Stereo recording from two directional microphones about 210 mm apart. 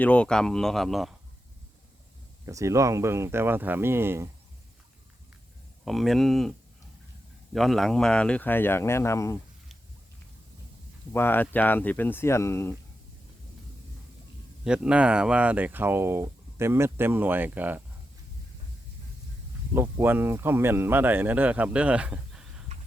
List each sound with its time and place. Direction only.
0.0 s speech: 5° left (ahead or behind)
2.5 s speech: 15° right (ahead or behind)
5.8 s speech: centre (ahead or behind)
7.5 s speech: centre (ahead or behind)
11.1 s speech: 10° left (ahead or behind)
14.6 s speech: 5° right (ahead or behind)
19.7 s speech: 10° right (ahead or behind)